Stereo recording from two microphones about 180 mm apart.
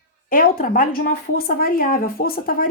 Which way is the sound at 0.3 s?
50° left (ahead or behind).